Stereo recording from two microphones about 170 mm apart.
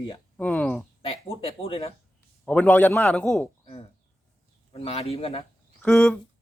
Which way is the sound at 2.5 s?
10° left (ahead or behind).